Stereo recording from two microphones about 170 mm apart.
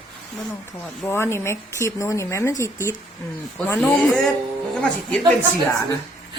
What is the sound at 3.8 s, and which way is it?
Speech, 5° left (ahead or behind).